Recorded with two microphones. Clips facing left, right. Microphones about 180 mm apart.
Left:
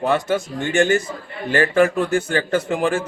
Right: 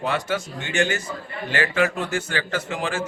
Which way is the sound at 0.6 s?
50° left (ahead or behind).